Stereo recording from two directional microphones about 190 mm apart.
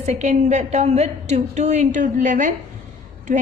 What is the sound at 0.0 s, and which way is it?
A woman's voice, 40° right (ahead or behind).